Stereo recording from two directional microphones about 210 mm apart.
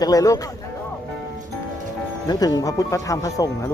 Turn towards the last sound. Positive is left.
turn(degrees=15)  # may be behind; listen again after turning